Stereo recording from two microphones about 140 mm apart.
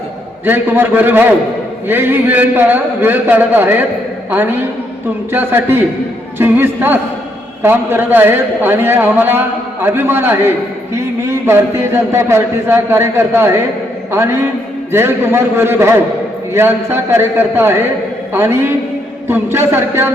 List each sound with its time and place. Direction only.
0.4 s a man's voice: 15° right (ahead or behind)